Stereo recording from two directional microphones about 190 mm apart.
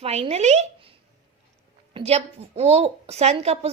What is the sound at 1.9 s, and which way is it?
A woman's voice, 30° right (ahead or behind).